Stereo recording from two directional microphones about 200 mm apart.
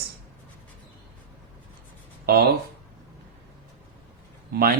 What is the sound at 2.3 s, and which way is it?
Speech, 50° right (ahead or behind).